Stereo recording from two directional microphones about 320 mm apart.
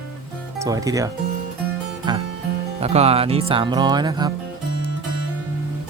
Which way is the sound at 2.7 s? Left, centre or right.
Centre.